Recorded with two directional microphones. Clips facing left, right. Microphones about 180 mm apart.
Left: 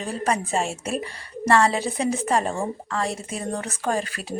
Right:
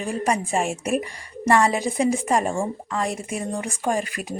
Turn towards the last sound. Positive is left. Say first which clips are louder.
# right 1 dB
turn(degrees=-15)  # may be behind; listen again after turning